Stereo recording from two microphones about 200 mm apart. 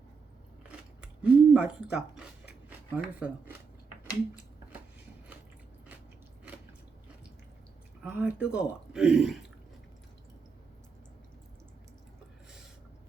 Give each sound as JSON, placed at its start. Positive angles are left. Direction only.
{"t": 0.7, "sound": "a sound", "side_deg": -5}
{"t": 2.6, "sound": "speech", "side_deg": -5}
{"t": 8.0, "sound": "speech", "side_deg": -10}